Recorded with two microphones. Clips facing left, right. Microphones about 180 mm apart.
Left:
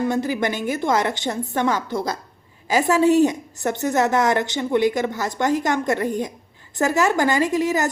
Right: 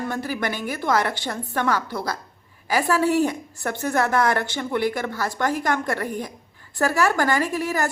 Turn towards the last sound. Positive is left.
turn(degrees=20)  # may be behind; listen again after turning